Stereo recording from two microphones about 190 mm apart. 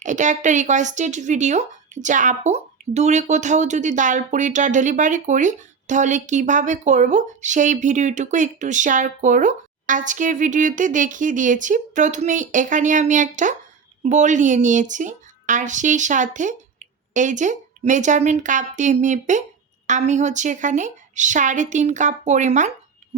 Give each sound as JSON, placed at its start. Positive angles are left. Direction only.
{"t": 0.0, "sound": "speech", "side_deg": -40}